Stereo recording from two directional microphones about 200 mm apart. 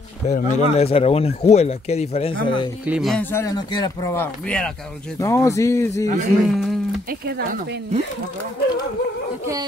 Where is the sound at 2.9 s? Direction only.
Centre (ahead or behind).